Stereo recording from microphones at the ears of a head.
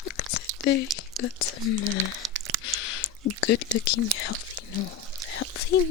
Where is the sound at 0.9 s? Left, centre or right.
Left.